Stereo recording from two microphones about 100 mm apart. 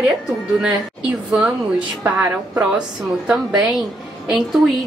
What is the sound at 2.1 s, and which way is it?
Speech, 20° right (ahead or behind).